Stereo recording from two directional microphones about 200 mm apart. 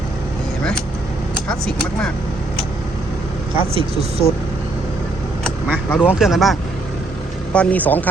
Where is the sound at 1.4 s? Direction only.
5° left (ahead or behind).